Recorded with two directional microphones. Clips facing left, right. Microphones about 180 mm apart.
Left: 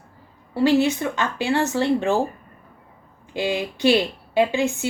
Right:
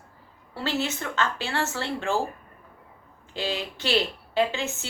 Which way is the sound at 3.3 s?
15° left (ahead or behind).